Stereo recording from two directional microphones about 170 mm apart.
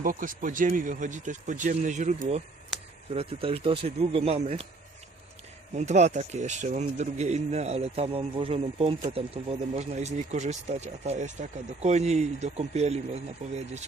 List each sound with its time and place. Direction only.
0.0 s speech: 55° right (ahead or behind)
3.2 s speech: 35° right (ahead or behind)
5.7 s speech: 45° right (ahead or behind)